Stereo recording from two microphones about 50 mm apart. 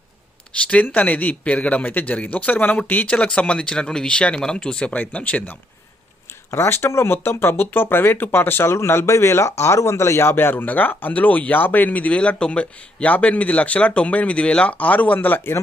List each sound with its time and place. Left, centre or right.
0.5 s speech: left
3.1 s speech: left
4.9 s speech: left
6.5 s speech: left
8.7 s speech: left